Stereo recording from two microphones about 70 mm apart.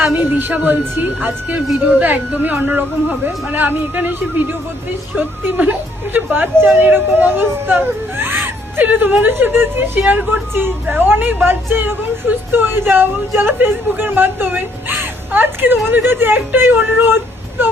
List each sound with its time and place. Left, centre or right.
0.0 s speech: right